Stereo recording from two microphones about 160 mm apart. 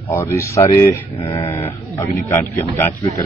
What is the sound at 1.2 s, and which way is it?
Speech, 35° left (ahead or behind).